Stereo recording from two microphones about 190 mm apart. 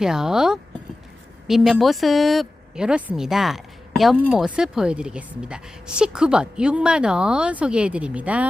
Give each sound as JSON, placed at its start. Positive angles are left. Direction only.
{"t": 0.0, "sound": "speech", "side_deg": -5}